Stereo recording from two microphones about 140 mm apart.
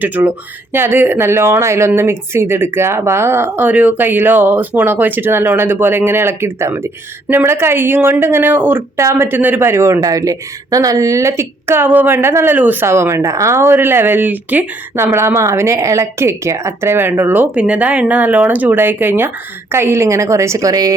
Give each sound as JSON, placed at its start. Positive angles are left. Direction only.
{"t": 0.0, "sound": "a woman's voice", "side_deg": -15}